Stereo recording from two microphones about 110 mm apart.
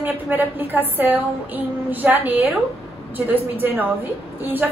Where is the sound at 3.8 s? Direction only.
15° right (ahead or behind).